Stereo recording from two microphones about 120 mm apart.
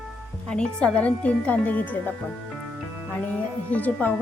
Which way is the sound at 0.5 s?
5° left (ahead or behind).